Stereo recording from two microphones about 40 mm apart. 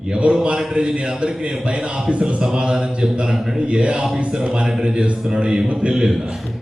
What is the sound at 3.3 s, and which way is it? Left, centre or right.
Speech, centre.